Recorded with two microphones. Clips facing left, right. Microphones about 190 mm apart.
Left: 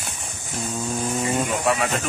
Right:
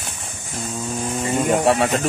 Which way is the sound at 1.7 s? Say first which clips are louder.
Right 5 dB; 30° right (ahead or behind).